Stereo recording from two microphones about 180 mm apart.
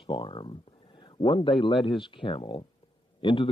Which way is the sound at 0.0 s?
25° left (ahead or behind).